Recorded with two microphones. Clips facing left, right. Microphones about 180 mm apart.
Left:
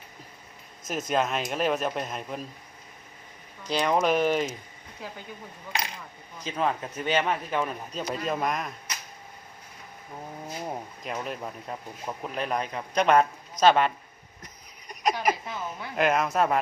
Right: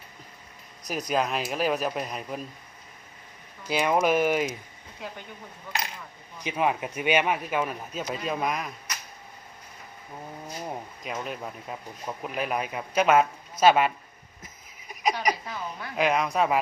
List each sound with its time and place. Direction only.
0.9 s speech: centre (ahead or behind)
3.7 s a man's voice: 5° right (ahead or behind)
6.4 s a man's voice: 15° right (ahead or behind)
10.4 s speech: centre (ahead or behind)
14.4 s a sound: 5° right (ahead or behind)
16.0 s speech: centre (ahead or behind)